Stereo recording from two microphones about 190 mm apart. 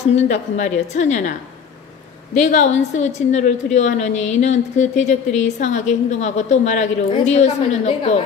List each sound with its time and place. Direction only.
0.1 s a woman's voice: 40° left (ahead or behind)
2.3 s a woman's voice: 40° left (ahead or behind)